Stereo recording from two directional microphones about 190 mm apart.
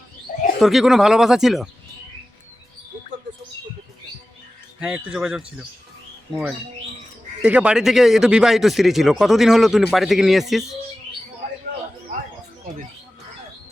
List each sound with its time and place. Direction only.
0.6 s speech: centre (ahead or behind)
4.8 s speech: 5° right (ahead or behind)
7.4 s speech: 5° right (ahead or behind)